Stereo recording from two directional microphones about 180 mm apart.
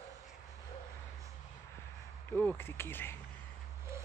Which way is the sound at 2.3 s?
10° left (ahead or behind).